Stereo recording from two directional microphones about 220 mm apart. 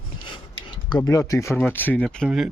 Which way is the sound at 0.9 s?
15° left (ahead or behind).